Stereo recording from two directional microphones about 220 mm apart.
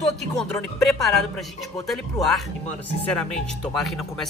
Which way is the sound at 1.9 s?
Centre (ahead or behind).